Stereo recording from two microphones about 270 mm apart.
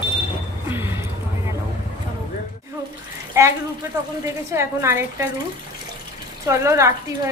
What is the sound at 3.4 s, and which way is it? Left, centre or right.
A woman's voice, centre.